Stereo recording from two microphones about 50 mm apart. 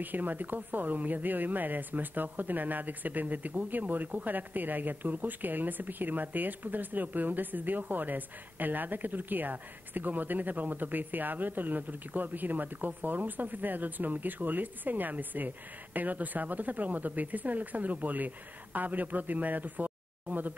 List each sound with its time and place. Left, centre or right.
0.0 s speech: right